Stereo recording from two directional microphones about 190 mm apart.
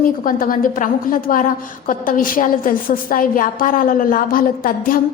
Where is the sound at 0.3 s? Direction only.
45° left (ahead or behind).